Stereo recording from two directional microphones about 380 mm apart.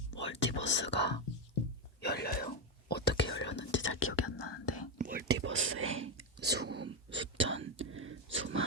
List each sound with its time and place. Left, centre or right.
0.2 s whispering: left
0.6 s speech: left
2.9 s whispering: left
4.4 s speech: left
4.6 s whispering: left
4.9 s whispering: right